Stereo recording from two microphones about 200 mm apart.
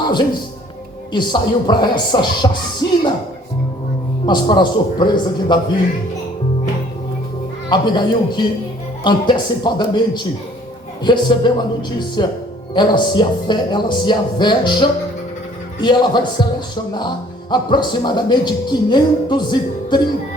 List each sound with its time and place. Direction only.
1.1 s speech: 20° left (ahead or behind)
4.3 s speech: 20° left (ahead or behind)
7.7 s speech: 20° left (ahead or behind)